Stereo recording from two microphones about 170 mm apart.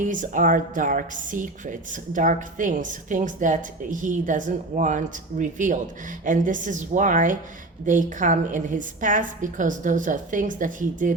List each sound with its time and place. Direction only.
0.0 s a woman's voice: 50° right (ahead or behind)